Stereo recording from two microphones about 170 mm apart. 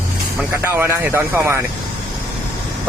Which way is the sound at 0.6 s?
15° right (ahead or behind).